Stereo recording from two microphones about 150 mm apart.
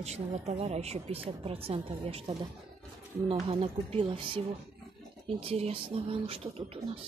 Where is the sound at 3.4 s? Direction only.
40° right (ahead or behind).